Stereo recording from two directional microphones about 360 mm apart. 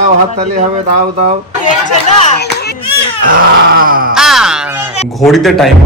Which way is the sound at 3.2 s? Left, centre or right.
Right.